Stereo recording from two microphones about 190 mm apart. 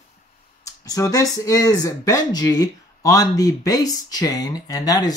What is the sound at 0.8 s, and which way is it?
Speech, 15° left (ahead or behind).